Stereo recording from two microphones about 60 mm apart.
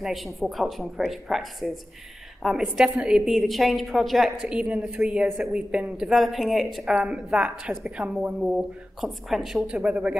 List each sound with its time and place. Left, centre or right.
0.0 s a woman's voice: centre
2.6 s a woman's voice: centre
6.1 s a woman's voice: centre
6.9 s a woman's voice: centre
9.8 s a man's voice: right